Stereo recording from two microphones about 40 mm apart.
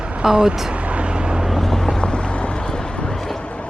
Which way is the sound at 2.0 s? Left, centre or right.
Left.